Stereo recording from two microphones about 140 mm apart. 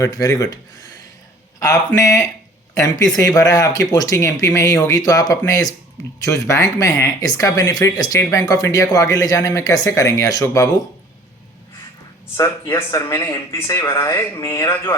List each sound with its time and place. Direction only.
0.0 s speech: 25° left (ahead or behind)
12.4 s speech: 20° left (ahead or behind)